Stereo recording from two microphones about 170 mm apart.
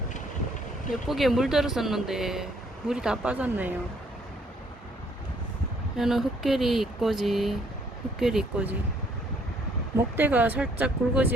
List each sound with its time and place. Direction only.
0.9 s speech: centre (ahead or behind)
6.0 s speech: centre (ahead or behind)
10.2 s speech: 10° right (ahead or behind)